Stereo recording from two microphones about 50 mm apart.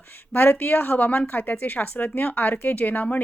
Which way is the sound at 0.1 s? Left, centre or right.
Left.